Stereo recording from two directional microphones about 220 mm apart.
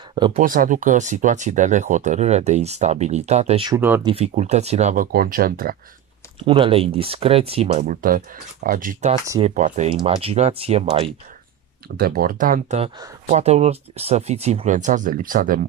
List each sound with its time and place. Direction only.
0.1 s speech: 20° right (ahead or behind)
0.4 s speech: 40° right (ahead or behind)
6.4 s speech: 25° right (ahead or behind)
12.0 s speech: 40° right (ahead or behind)